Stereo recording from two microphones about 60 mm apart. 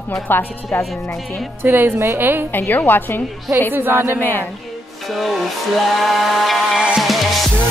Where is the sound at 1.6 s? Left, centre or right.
Right.